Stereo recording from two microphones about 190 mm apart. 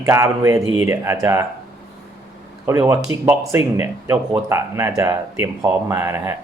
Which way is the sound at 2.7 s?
15° right (ahead or behind).